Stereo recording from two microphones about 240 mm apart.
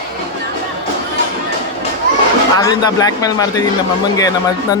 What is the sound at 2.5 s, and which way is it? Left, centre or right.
Speech, centre.